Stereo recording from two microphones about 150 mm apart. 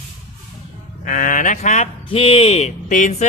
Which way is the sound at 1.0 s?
60° left (ahead or behind).